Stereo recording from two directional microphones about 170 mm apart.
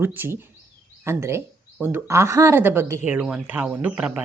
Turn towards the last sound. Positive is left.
turn(degrees=-5)  # may be behind; listen again after turning